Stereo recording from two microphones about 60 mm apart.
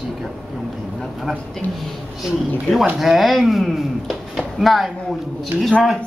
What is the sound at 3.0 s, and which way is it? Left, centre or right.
Speech, centre.